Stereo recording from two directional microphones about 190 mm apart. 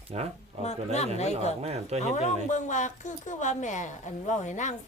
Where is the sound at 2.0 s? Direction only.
40° left (ahead or behind).